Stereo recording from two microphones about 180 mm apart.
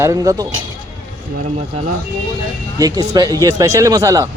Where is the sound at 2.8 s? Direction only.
20° right (ahead or behind).